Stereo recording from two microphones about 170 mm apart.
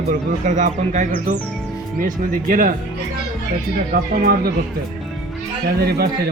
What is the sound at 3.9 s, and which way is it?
Speech, 60° right (ahead or behind).